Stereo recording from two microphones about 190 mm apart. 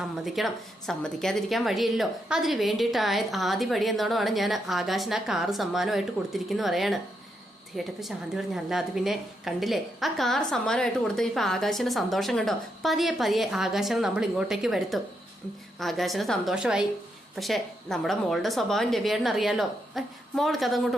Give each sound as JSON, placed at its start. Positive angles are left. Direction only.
{"t": 0.0, "sound": "a woman's voice", "side_deg": 0}